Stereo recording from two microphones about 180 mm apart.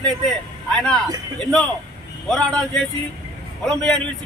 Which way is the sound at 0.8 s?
5° left (ahead or behind).